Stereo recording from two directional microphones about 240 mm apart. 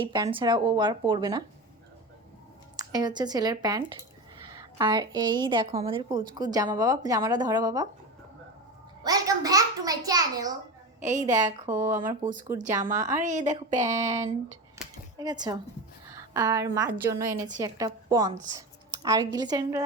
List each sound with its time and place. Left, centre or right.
0.0 s speech: centre
2.7 s a woman's voice: centre
9.0 s a child's voice: centre
11.0 s speech: right
11.4 s a woman's voice: centre
12.0 s speech: right
13.9 s a woman's voice: centre